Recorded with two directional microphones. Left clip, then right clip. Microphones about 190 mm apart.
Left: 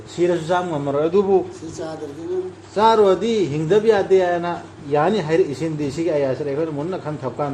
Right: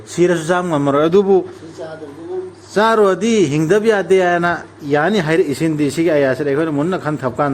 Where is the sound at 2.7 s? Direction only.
65° right (ahead or behind).